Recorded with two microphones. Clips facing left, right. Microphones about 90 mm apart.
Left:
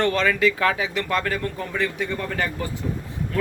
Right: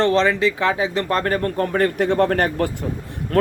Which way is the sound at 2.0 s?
75° right (ahead or behind).